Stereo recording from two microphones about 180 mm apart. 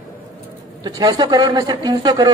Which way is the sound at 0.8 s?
25° right (ahead or behind).